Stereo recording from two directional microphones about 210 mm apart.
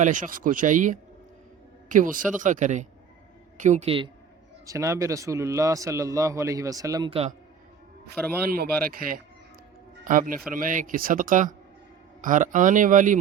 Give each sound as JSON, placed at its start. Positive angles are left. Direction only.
{"t": 0.0, "sound": "a man's voice", "side_deg": -35}
{"t": 4.6, "sound": "a man's voice", "side_deg": -15}
{"t": 7.1, "sound": "a man's voice", "side_deg": -30}
{"t": 8.4, "sound": "a man's voice", "side_deg": -45}